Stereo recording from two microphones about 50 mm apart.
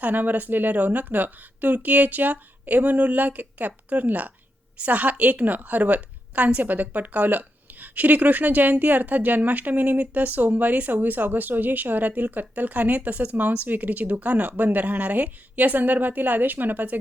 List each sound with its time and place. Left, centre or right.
0.0 s a woman's voice: right